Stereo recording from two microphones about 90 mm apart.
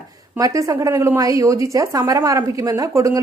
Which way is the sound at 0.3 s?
40° right (ahead or behind).